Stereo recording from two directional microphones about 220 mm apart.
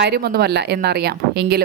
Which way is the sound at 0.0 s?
45° right (ahead or behind).